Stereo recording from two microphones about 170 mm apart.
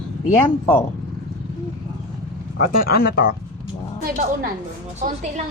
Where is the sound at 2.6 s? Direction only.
60° left (ahead or behind).